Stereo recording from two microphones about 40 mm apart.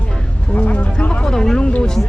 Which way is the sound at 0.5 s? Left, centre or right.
Left.